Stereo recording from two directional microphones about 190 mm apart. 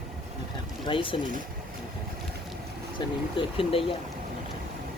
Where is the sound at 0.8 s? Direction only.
25° left (ahead or behind).